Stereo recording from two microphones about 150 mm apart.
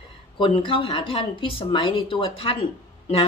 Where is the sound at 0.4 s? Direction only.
35° left (ahead or behind).